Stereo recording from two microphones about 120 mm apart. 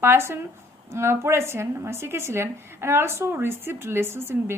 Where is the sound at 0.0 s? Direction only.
20° right (ahead or behind).